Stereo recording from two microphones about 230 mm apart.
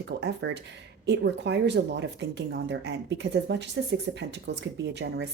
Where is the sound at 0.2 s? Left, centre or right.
Right.